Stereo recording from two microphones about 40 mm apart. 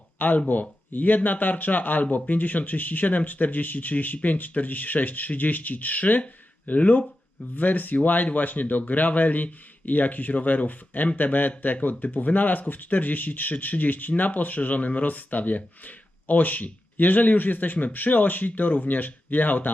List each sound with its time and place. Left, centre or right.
0.2 s speech: left